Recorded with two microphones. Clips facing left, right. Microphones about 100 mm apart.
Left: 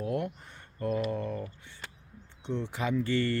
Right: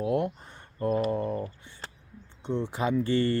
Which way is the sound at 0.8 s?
35° right (ahead or behind).